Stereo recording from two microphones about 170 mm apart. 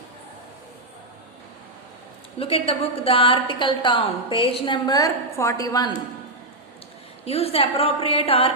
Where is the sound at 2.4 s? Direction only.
35° left (ahead or behind).